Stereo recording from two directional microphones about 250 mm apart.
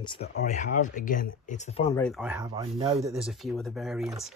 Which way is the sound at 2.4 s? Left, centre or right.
Centre.